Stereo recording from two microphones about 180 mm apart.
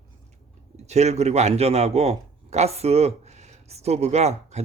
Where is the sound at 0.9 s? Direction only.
40° right (ahead or behind).